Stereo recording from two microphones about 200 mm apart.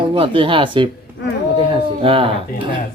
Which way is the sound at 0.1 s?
25° right (ahead or behind).